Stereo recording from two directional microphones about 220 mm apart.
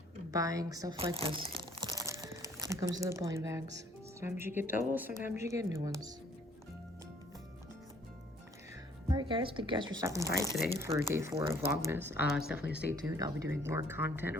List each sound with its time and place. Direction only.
0.3 s speech: 15° right (ahead or behind)
9.0 s speech: 20° right (ahead or behind)